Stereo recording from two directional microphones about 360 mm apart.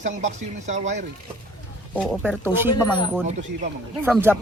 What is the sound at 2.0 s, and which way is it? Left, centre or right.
Speech, centre.